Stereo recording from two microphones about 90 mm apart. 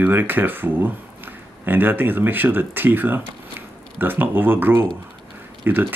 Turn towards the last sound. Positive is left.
turn(degrees=-20)  # may be behind; listen again after turning